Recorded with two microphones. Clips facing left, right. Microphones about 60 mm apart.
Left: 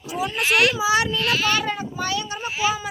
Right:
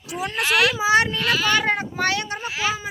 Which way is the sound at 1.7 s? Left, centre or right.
Right.